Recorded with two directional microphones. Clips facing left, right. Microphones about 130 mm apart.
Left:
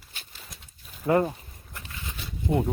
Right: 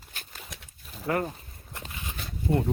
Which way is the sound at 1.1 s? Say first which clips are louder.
Left 6 dB; 25° left (ahead or behind).